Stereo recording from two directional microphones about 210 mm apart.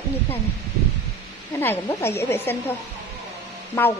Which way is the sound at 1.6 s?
10° left (ahead or behind).